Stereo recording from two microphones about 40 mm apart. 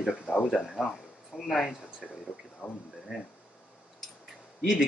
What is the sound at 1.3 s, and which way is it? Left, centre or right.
Speech, centre.